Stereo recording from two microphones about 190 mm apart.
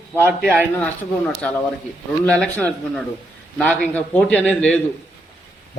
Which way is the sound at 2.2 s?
5° left (ahead or behind).